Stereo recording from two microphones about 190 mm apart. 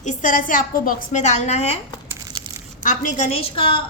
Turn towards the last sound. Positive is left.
turn(degrees=30)  # may be behind; listen again after turning